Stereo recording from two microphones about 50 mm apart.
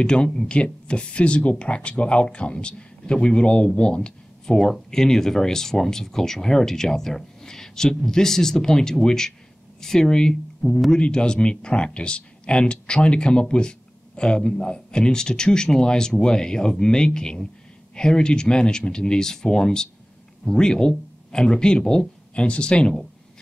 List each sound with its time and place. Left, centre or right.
0.0 s speech: centre